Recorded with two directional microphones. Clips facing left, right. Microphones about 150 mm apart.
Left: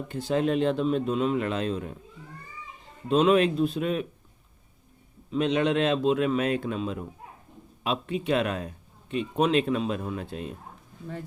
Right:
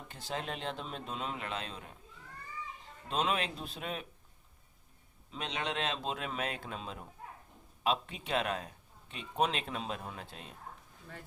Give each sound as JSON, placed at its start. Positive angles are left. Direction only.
{"t": 0.1, "sound": "speech", "side_deg": 55}
{"t": 3.1, "sound": "speech", "side_deg": 55}
{"t": 5.3, "sound": "speech", "side_deg": 55}